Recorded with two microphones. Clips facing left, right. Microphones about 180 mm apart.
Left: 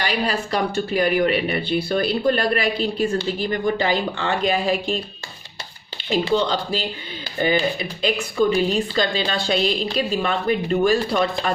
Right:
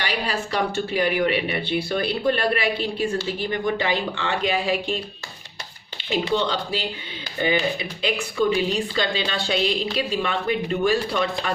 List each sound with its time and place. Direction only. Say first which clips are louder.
0.0 s speech: left 3 dB; 40° left (ahead or behind)
6.1 s speech: left 3 dB; 40° left (ahead or behind)